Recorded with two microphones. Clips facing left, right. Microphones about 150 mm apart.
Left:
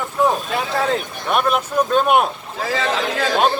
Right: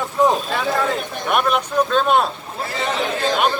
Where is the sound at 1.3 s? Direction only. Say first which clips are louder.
Left 1 dB; centre (ahead or behind).